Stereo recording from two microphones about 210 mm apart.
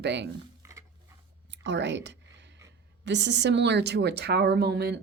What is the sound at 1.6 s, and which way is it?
A woman's voice, 55° right (ahead or behind).